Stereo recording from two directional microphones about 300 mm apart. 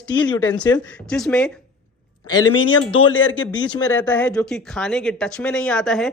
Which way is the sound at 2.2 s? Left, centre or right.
Centre.